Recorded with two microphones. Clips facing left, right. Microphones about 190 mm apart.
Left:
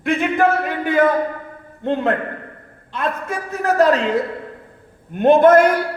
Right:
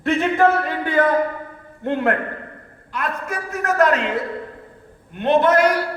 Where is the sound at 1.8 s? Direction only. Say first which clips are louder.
Left 1 dB; 20° left (ahead or behind).